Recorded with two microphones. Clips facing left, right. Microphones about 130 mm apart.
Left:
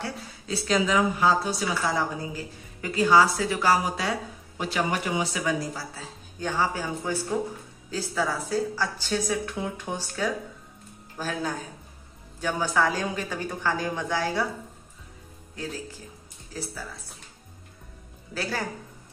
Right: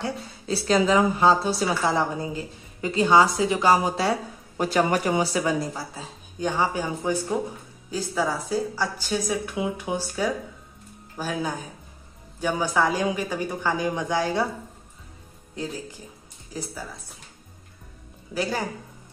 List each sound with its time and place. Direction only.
0.5 s a woman's voice: 35° right (ahead or behind)
4.6 s speech: 45° right (ahead or behind)
5.8 s speech: 15° right (ahead or behind)
16.5 s speech: 15° right (ahead or behind)
18.3 s speech: 15° right (ahead or behind)